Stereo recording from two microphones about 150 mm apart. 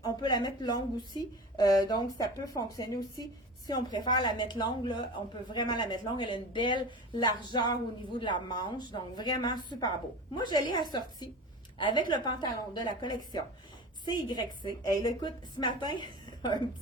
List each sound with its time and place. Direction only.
0.0 s a woman's voice: 30° left (ahead or behind)